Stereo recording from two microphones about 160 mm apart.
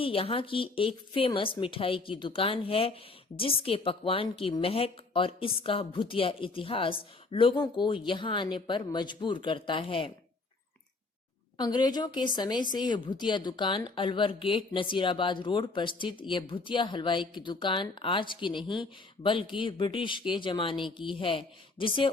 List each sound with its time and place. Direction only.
0.0 s speech: 35° left (ahead or behind)
11.5 s speech: 25° left (ahead or behind)